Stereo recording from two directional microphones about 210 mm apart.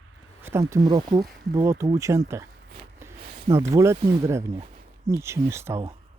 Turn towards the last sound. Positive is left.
turn(degrees=-10)  # may be behind; listen again after turning